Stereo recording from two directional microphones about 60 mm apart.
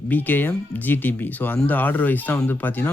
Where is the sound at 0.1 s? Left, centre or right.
Left.